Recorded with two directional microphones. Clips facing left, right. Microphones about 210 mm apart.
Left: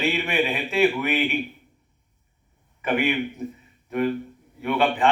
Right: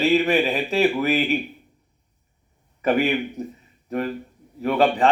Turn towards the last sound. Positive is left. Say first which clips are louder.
# right 3 dB
turn(degrees=-35)  # may be behind; listen again after turning